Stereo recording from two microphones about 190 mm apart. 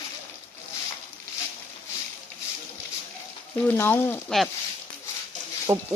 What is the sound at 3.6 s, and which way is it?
Speech, 10° left (ahead or behind).